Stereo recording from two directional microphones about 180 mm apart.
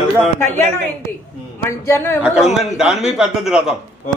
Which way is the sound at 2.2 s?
5° right (ahead or behind).